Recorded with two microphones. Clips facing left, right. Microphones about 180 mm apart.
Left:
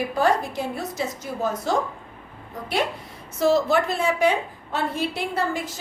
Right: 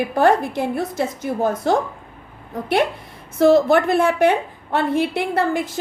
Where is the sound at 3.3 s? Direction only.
55° right (ahead or behind).